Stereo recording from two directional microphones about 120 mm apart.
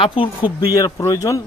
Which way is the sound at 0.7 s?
30° left (ahead or behind).